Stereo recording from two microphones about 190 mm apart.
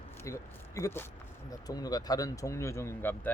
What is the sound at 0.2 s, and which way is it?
Speech, 15° left (ahead or behind).